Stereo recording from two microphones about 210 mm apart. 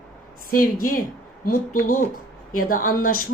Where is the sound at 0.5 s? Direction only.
40° left (ahead or behind).